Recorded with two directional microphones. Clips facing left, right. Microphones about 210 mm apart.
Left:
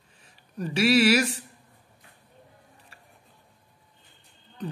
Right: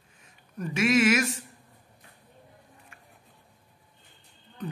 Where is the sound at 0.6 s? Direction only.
35° left (ahead or behind).